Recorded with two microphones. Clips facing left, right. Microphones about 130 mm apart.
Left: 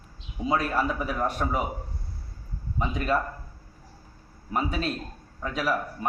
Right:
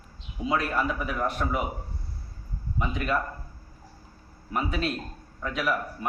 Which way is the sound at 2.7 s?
35° left (ahead or behind).